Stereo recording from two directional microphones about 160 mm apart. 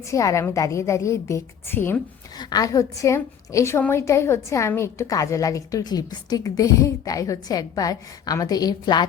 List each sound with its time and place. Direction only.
0.1 s a woman's voice: 20° left (ahead or behind)
2.4 s a woman's voice: 25° left (ahead or behind)